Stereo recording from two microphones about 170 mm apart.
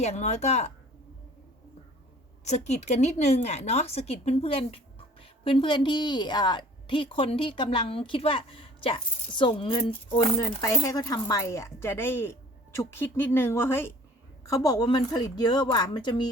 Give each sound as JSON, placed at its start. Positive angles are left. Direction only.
{"t": 0.0, "sound": "a woman's voice", "side_deg": 40}
{"t": 2.4, "sound": "a woman's voice", "side_deg": 40}
{"t": 10.2, "sound": "a woman's voice", "side_deg": 20}